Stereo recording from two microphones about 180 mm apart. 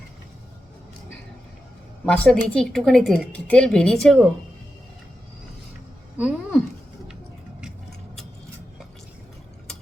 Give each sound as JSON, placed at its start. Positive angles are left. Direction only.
{"t": 2.0, "sound": "a woman's voice", "side_deg": 5}
{"t": 6.1, "sound": "speech", "side_deg": -5}